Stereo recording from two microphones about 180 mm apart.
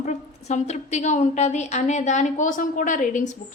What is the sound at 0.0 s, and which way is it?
A woman's voice, 40° left (ahead or behind).